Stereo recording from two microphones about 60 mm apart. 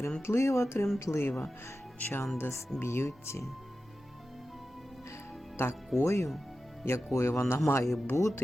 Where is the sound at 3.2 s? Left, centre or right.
Left.